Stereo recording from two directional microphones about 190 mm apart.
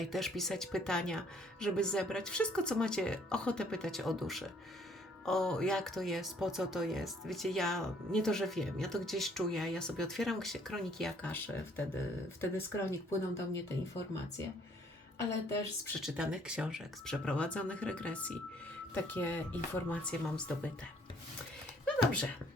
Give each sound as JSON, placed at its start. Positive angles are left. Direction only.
{"t": 0.0, "sound": "speech", "side_deg": 0}
{"t": 12.4, "sound": "speech", "side_deg": 15}
{"t": 15.3, "sound": "speech", "side_deg": 15}
{"t": 16.0, "sound": "speech", "side_deg": -5}
{"t": 21.8, "sound": "a sound", "side_deg": 5}